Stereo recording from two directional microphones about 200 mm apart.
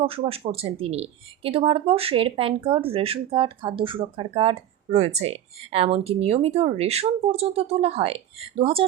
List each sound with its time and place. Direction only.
0.0 s speech: 30° right (ahead or behind)